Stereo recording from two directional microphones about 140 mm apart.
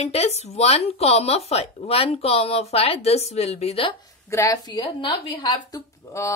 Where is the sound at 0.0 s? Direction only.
45° left (ahead or behind).